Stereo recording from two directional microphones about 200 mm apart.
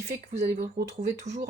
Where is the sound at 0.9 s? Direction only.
35° right (ahead or behind).